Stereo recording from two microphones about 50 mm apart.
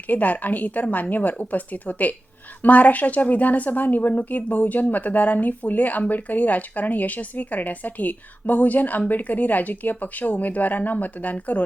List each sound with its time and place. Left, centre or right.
0.1 s a woman's voice: left